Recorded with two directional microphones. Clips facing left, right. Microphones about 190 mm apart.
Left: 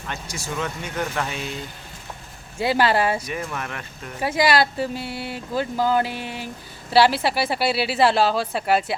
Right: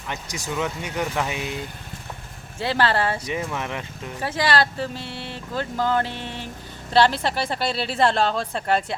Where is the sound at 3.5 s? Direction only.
20° right (ahead or behind).